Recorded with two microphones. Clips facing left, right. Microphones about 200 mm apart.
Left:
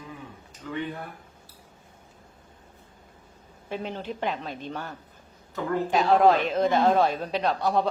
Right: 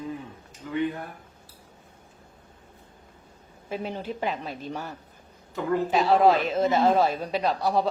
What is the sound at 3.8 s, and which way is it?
A woman's voice, 10° right (ahead or behind).